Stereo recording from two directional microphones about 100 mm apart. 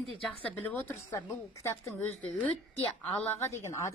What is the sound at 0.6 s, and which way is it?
Speech, 20° left (ahead or behind).